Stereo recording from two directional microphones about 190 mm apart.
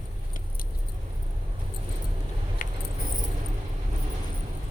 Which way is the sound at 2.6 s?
45° left (ahead or behind).